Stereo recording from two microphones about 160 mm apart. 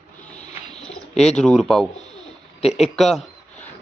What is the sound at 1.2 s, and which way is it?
Speech, 5° left (ahead or behind).